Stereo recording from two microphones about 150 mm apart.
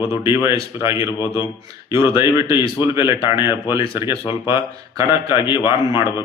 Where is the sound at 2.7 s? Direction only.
20° right (ahead or behind).